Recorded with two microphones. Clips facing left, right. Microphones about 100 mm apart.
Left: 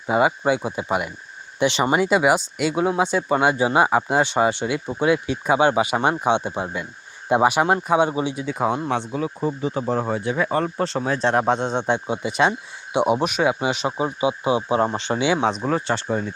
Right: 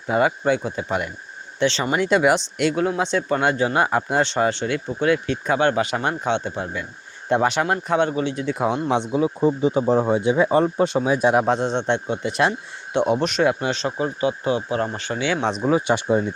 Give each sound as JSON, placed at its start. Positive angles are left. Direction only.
{"t": 0.1, "sound": "speech", "side_deg": 10}
{"t": 8.9, "sound": "speech", "side_deg": -20}
{"t": 15.4, "sound": "speech", "side_deg": -5}